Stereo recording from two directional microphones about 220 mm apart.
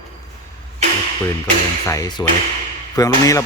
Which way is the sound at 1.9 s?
15° left (ahead or behind).